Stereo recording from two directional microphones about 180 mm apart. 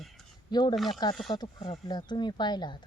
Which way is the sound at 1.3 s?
25° left (ahead or behind).